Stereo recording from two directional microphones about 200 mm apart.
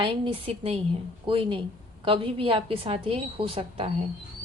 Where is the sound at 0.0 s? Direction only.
25° right (ahead or behind).